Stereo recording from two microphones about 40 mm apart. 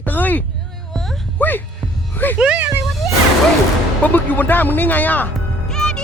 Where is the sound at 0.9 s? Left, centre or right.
Centre.